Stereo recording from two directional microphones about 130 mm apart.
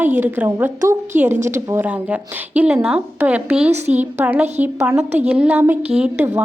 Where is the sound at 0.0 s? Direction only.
15° right (ahead or behind).